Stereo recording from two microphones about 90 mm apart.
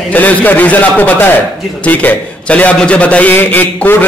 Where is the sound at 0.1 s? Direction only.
20° left (ahead or behind).